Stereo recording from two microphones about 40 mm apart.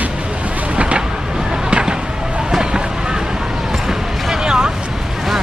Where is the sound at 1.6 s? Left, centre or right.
Right.